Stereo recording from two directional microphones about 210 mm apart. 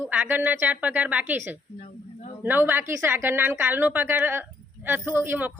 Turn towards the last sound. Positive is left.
turn(degrees=-10)  # may be behind; listen again after turning